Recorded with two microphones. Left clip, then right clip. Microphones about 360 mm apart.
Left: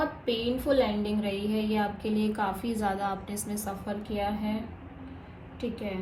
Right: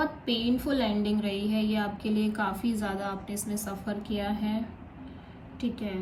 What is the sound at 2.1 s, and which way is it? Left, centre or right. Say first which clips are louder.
A woman's voice: left 1 dB; centre.